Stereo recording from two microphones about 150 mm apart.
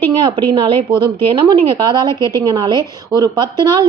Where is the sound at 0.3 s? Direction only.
30° right (ahead or behind).